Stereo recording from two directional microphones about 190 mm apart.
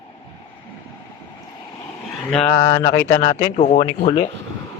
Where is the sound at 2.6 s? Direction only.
55° left (ahead or behind).